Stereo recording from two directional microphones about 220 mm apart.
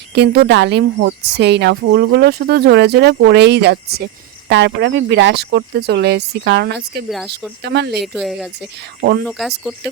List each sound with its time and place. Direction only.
0.1 s speech: 50° right (ahead or behind)
8.0 s speech: centre (ahead or behind)
9.0 s speech: 45° right (ahead or behind)
9.2 s speech: centre (ahead or behind)